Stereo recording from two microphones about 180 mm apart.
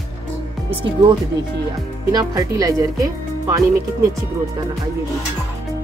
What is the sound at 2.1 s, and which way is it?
Speech, 20° right (ahead or behind).